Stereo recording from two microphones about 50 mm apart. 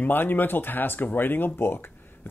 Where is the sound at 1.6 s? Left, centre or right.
Left.